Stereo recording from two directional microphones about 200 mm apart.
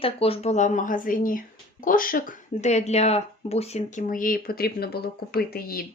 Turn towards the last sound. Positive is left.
turn(degrees=50)  # may be behind; listen again after turning